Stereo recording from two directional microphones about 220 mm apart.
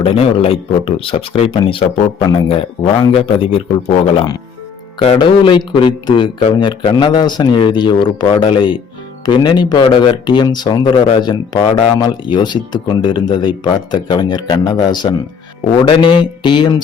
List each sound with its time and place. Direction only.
0.0 s speech: 25° left (ahead or behind)